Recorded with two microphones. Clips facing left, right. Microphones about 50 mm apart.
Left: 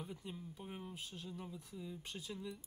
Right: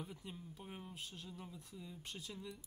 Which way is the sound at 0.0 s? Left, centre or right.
Centre.